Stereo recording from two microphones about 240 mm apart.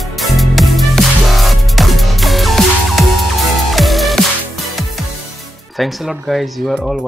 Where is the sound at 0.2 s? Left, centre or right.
Centre.